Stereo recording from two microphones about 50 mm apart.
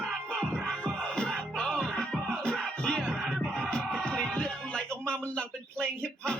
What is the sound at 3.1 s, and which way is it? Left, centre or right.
Music, centre.